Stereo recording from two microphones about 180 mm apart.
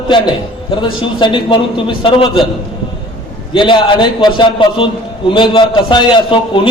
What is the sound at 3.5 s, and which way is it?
A man's voice, 25° left (ahead or behind).